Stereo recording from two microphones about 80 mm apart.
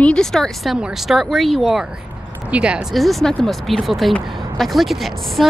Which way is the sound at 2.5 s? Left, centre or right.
Centre.